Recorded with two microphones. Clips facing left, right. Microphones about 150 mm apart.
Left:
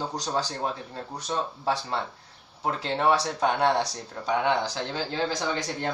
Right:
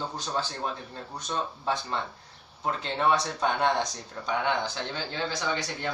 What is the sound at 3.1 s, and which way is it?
A man's voice, 35° left (ahead or behind).